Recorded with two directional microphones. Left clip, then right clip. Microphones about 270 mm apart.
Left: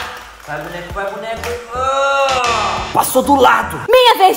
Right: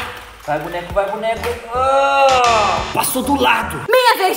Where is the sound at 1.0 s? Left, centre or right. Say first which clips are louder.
Right 4 dB; right.